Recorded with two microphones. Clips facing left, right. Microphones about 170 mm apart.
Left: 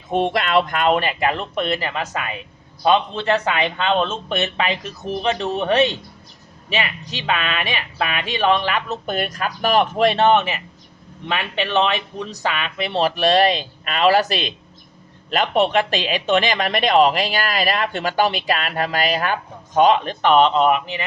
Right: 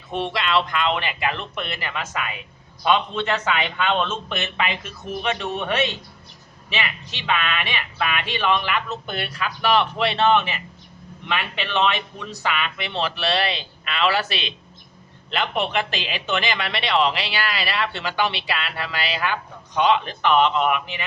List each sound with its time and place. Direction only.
0.1 s speech: 45° left (ahead or behind)
3.6 s speech: 30° left (ahead or behind)